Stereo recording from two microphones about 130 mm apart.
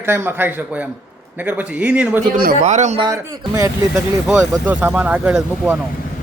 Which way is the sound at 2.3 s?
75° right (ahead or behind).